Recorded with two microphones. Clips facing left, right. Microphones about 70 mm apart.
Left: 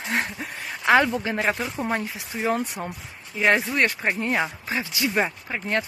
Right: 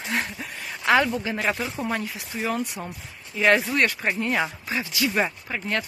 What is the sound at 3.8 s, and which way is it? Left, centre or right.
Speech, left.